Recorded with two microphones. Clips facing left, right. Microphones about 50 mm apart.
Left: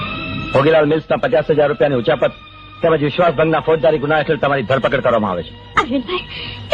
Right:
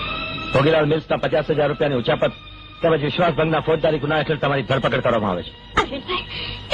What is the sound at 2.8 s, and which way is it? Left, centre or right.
Speech, centre.